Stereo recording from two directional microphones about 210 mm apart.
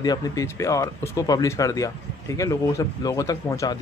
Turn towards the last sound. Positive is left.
turn(degrees=15)  # may be behind; listen again after turning